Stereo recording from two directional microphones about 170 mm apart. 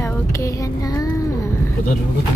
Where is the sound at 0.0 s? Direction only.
20° left (ahead or behind).